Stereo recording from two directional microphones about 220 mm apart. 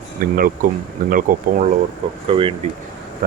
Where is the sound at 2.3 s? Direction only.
25° right (ahead or behind).